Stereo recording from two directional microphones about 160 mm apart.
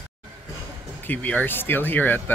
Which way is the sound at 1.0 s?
10° left (ahead or behind).